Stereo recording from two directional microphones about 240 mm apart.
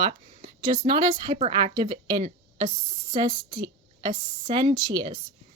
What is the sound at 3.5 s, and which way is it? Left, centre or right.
Speech, centre.